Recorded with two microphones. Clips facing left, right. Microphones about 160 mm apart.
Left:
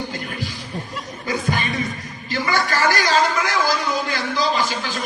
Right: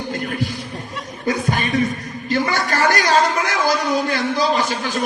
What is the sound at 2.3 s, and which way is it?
A man's voice, 55° right (ahead or behind).